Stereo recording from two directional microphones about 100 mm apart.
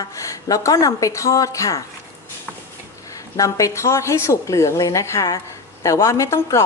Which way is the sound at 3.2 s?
35° left (ahead or behind).